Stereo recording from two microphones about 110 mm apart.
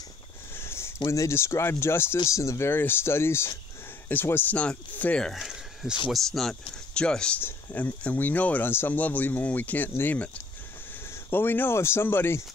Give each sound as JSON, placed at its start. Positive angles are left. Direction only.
{"t": 0.6, "sound": "a sound", "side_deg": 25}
{"t": 1.1, "sound": "speech", "side_deg": 25}
{"t": 5.3, "sound": "speech", "side_deg": 0}